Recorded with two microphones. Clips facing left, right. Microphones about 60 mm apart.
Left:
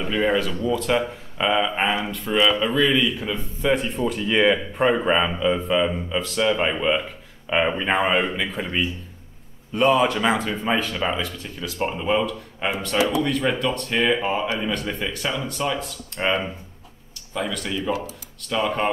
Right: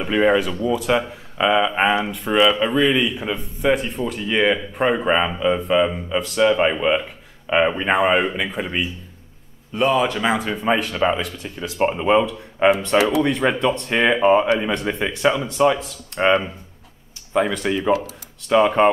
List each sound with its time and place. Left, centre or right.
0.0 s speech: centre
2.9 s speech: centre
3.7 s speech: centre
11.8 s speech: right
12.9 s speech: right
13.2 s speech: right
17.3 s speech: right